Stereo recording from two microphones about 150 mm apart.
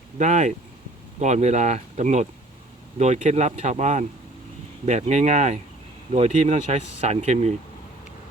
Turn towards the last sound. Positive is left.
turn(degrees=-50)  # may be behind; listen again after turning